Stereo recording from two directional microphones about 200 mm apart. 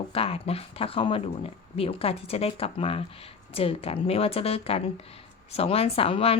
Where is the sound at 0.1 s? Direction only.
30° left (ahead or behind).